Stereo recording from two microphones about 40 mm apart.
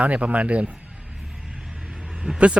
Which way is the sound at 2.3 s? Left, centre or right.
Right.